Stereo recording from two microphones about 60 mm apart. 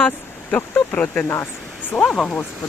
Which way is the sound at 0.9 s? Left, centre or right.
Left.